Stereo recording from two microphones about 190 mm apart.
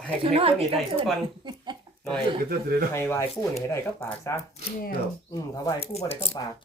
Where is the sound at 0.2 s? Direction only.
30° right (ahead or behind).